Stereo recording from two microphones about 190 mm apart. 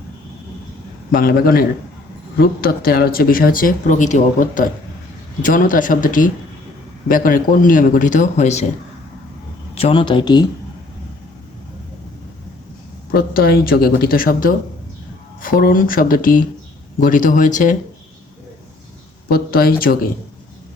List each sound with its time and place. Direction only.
1.1 s speech: 50° left (ahead or behind)
9.7 s speech: 30° left (ahead or behind)
13.1 s speech: 50° left (ahead or behind)
19.3 s speech: 50° left (ahead or behind)